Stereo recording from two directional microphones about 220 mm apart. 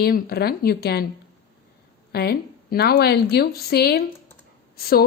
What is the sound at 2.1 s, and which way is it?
A woman's voice, 45° left (ahead or behind).